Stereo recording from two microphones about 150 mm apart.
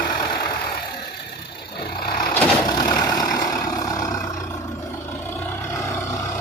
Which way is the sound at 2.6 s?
25° left (ahead or behind).